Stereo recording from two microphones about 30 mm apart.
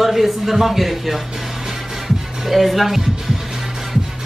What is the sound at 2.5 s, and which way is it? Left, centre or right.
Speech, centre.